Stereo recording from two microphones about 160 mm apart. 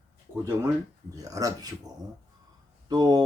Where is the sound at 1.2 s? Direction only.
20° right (ahead or behind).